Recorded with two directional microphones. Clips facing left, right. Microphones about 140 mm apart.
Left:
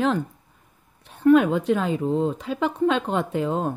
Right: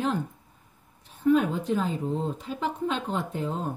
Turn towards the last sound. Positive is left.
turn(degrees=75)  # may be behind; listen again after turning